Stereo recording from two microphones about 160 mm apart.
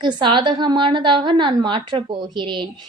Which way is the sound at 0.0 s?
30° right (ahead or behind).